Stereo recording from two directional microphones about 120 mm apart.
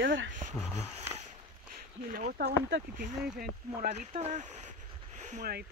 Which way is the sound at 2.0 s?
70° right (ahead or behind).